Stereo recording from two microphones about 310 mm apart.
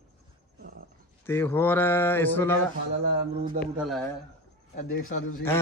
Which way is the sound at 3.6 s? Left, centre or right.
Centre.